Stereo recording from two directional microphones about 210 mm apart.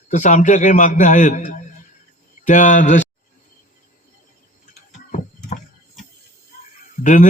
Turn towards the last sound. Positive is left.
turn(degrees=35)  # may be behind; listen again after turning